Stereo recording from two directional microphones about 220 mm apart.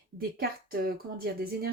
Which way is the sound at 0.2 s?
45° right (ahead or behind).